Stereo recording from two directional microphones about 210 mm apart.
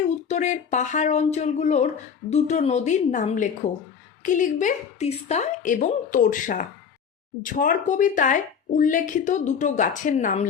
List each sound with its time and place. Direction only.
0.3 s speech: 35° left (ahead or behind)